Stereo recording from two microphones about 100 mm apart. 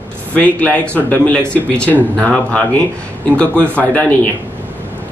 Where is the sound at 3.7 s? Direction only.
15° left (ahead or behind).